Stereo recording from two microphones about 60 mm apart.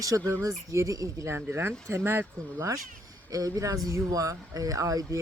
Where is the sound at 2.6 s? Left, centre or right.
Right.